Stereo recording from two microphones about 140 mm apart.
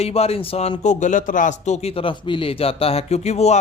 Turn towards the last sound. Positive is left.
turn(degrees=50)  # may be behind; listen again after turning